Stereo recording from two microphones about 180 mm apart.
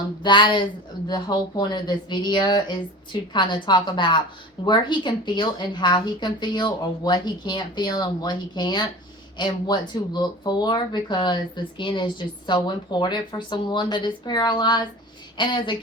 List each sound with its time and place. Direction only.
0.2 s speech: 25° left (ahead or behind)